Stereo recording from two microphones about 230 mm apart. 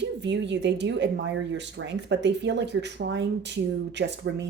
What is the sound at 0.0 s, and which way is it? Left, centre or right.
Speech, right.